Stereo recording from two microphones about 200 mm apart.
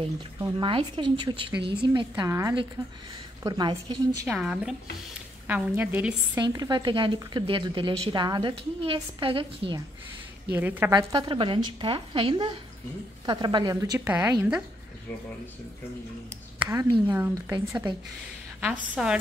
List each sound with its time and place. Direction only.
0.4 s speech: 25° right (ahead or behind)
4.3 s a woman's voice: 5° right (ahead or behind)
6.4 s speech: 20° right (ahead or behind)
10.5 s a woman's voice: 10° right (ahead or behind)
10.9 s speech: 20° right (ahead or behind)
16.5 s a woman's voice: 15° right (ahead or behind)